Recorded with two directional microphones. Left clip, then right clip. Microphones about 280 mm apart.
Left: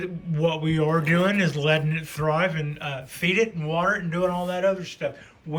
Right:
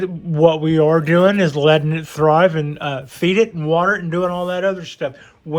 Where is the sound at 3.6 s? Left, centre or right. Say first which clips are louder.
Right 10 dB; right.